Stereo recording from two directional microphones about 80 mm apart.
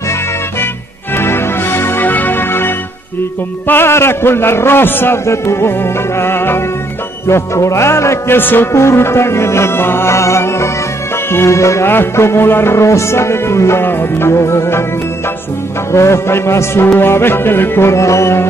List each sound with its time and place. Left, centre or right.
1.1 s music: left
15.9 s music: left